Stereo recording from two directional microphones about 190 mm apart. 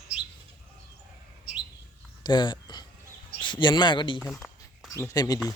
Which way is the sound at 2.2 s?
25° left (ahead or behind).